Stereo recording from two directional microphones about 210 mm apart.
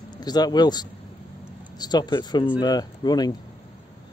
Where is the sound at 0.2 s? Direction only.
20° left (ahead or behind).